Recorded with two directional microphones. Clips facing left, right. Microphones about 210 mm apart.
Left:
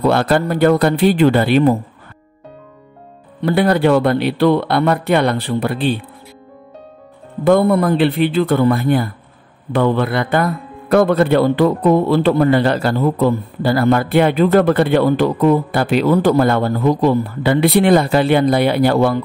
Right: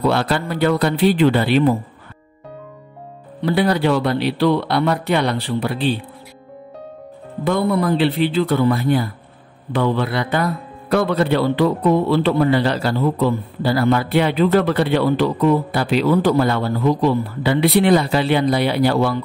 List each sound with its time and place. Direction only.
0.0 s speech: 50° left (ahead or behind)
3.4 s speech: 55° left (ahead or behind)
7.4 s speech: 55° left (ahead or behind)